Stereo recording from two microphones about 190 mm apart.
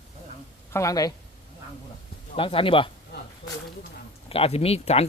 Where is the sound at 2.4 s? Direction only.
30° left (ahead or behind).